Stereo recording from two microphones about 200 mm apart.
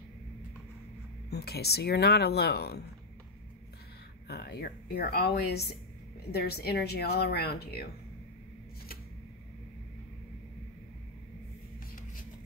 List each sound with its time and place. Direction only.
1.3 s speech: 55° left (ahead or behind)
4.3 s speech: 55° left (ahead or behind)